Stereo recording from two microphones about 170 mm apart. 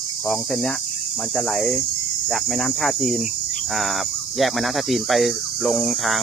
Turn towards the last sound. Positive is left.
turn(degrees=0)  # may be behind; listen again after turning